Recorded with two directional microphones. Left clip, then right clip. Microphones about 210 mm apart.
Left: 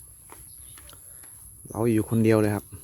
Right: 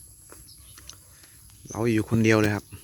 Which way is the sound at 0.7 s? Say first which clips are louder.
Right 3 dB; 15° left (ahead or behind).